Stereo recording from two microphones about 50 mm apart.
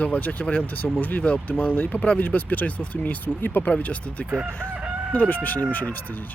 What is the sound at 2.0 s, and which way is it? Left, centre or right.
Speech, left.